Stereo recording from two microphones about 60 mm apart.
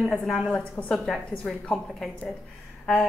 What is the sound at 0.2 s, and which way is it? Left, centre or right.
Speech, centre.